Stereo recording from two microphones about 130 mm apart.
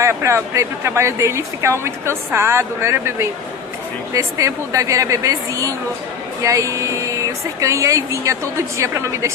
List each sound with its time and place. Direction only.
0.0 s speech: 20° right (ahead or behind)